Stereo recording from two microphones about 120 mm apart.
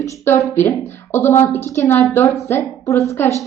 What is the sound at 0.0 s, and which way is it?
A woman's voice, 25° left (ahead or behind).